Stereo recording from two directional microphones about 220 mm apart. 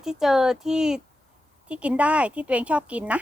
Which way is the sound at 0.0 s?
Centre (ahead or behind).